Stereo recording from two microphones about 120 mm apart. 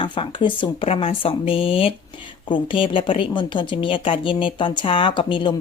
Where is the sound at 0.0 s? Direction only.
45° left (ahead or behind).